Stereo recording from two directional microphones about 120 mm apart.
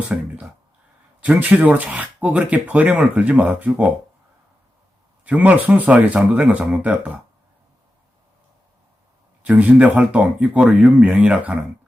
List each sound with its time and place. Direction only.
0.1 s speech: 10° right (ahead or behind)
5.2 s speech: 10° right (ahead or behind)
9.4 s speech: 10° right (ahead or behind)